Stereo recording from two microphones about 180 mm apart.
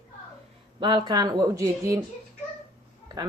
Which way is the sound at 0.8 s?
25° right (ahead or behind).